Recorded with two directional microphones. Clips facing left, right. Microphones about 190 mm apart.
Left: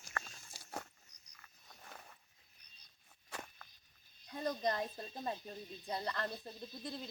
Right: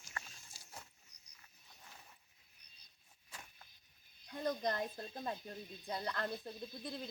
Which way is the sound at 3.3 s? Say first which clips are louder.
Left 8 dB; 70° left (ahead or behind).